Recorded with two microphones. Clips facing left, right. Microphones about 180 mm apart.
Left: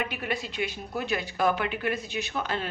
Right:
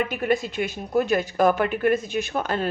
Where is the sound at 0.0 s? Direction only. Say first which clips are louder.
Right 8 dB; 45° right (ahead or behind).